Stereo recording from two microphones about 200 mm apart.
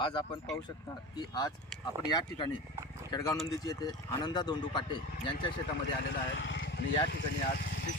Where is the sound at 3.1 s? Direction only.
15° left (ahead or behind).